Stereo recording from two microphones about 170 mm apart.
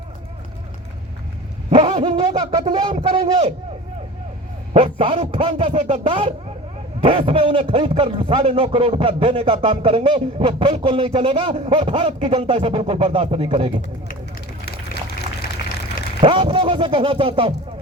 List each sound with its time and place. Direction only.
1.7 s speech: 30° right (ahead or behind)
4.7 s a man's voice: 35° right (ahead or behind)
16.2 s a man's voice: 30° right (ahead or behind)